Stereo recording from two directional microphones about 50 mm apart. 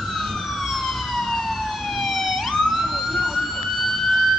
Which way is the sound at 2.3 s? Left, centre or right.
Centre.